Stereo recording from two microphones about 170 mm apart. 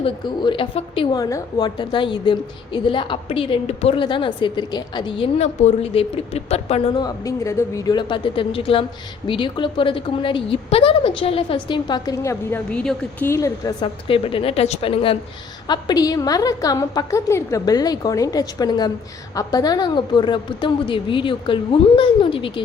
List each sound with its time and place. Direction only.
0.0 s speech: 30° left (ahead or behind)
1.2 s speech: 20° left (ahead or behind); by 7.0 s 40° left (ahead or behind)
7.0 s speech: 20° left (ahead or behind)
13.8 s a woman's voice: 30° left (ahead or behind)